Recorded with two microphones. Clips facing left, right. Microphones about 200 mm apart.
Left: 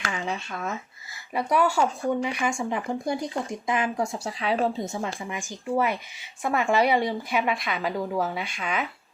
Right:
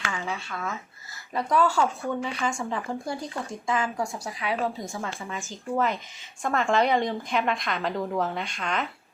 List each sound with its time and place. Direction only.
0.1 s speech: 15° left (ahead or behind)
5.2 s a woman's voice: 15° left (ahead or behind)